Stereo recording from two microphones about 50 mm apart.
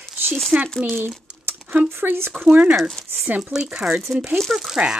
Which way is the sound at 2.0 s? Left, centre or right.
Right.